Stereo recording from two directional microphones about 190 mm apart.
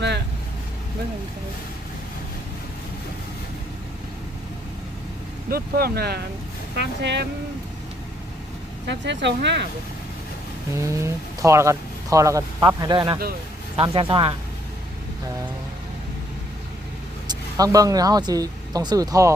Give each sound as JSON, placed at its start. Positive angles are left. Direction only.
{"t": 5.5, "sound": "speech", "side_deg": -55}
{"t": 8.9, "sound": "speech", "side_deg": -65}
{"t": 10.8, "sound": "speech", "side_deg": -15}
{"t": 17.2, "sound": "speech", "side_deg": -20}